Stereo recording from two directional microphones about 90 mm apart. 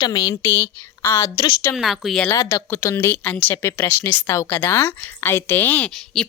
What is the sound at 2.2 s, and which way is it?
Speech, 35° left (ahead or behind).